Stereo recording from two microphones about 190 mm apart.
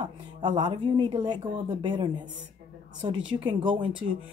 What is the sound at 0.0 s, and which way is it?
Speech, 25° right (ahead or behind).